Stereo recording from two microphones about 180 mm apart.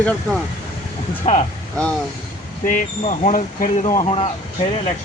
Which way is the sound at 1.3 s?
35° left (ahead or behind).